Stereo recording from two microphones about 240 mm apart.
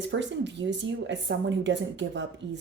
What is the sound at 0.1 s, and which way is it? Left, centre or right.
Speech, right.